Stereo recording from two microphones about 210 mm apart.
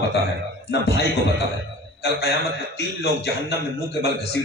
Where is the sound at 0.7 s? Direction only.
55° left (ahead or behind).